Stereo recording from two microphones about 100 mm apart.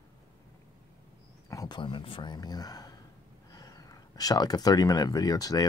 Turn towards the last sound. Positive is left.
turn(degrees=40)  # may be behind; listen again after turning